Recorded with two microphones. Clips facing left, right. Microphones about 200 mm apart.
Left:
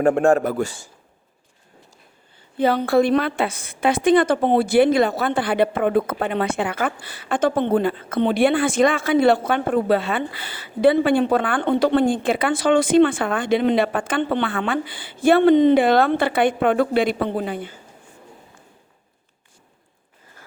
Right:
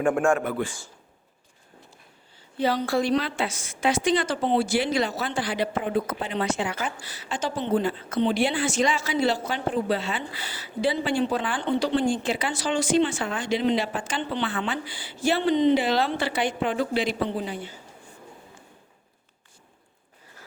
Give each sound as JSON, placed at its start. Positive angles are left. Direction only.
{"t": 0.0, "sound": "a man's voice", "side_deg": 35}
{"t": 2.6, "sound": "a woman's voice", "side_deg": 55}